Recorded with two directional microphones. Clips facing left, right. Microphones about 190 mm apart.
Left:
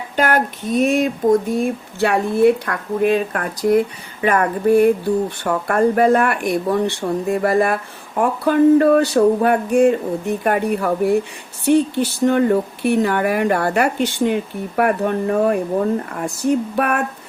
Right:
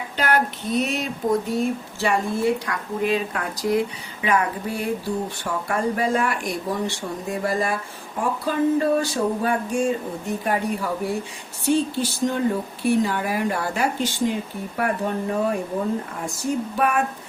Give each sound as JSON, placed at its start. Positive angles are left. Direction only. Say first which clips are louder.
{"t": 0.2, "sound": "speech", "louder": "left 4 dB", "side_deg": 50}
{"t": 16.7, "sound": "speech", "louder": "left 3 dB", "side_deg": 65}